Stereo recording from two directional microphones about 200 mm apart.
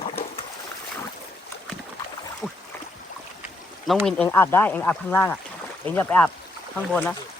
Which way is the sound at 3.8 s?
Centre (ahead or behind).